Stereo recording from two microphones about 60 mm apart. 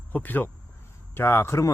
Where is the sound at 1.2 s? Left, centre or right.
Left.